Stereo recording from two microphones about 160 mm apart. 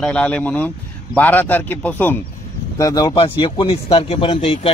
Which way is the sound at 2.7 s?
20° left (ahead or behind).